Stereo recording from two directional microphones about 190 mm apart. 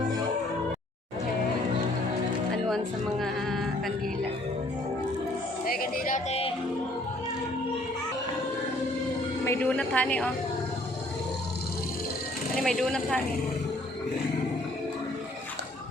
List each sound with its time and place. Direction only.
3.2 s speech: centre (ahead or behind)
5.6 s speech: 50° left (ahead or behind)
9.4 s a woman's voice: 10° left (ahead or behind)
12.6 s speech: 5° left (ahead or behind)